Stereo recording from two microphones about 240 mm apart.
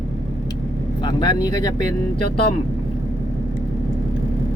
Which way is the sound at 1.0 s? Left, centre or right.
Centre.